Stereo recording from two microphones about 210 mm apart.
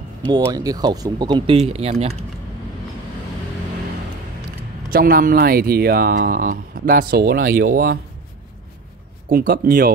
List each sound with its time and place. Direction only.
0.3 s speech: 15° right (ahead or behind)
4.9 s speech: 45° right (ahead or behind)
9.3 s speech: 45° right (ahead or behind)